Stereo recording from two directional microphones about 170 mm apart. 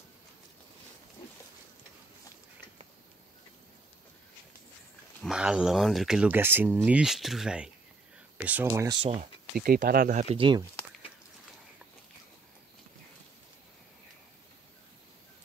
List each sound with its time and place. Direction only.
5.2 s speech: 5° right (ahead or behind)
9.0 s speech: 35° right (ahead or behind)
9.6 s speech: 55° right (ahead or behind)
10.3 s speech: 30° right (ahead or behind)